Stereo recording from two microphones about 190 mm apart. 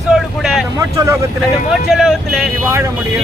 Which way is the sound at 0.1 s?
5° right (ahead or behind).